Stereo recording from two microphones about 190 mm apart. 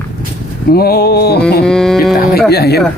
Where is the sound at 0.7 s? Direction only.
55° left (ahead or behind).